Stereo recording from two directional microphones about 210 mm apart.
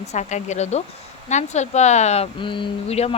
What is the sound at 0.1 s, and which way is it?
Speech, 35° left (ahead or behind).